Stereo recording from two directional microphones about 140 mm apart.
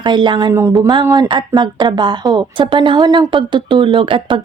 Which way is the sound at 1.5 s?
30° right (ahead or behind).